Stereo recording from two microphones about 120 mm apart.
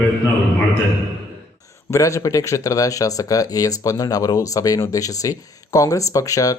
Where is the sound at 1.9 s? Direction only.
25° left (ahead or behind).